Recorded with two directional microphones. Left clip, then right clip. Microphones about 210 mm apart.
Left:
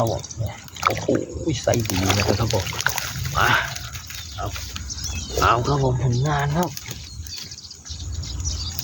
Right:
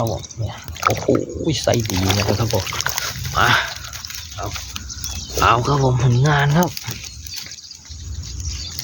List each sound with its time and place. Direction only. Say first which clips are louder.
0.8 s a sound: right 3 dB; 15° right (ahead or behind)
1.5 s speech: right 3 dB; 45° right (ahead or behind)
1.7 s speech: right 2 dB; 15° right (ahead or behind)
2.2 s speech: right 2 dB; 30° right (ahead or behind)
3.3 s speech: right 3 dB; 30° right (ahead or behind)
5.4 s speech: right 3 dB; 35° right (ahead or behind)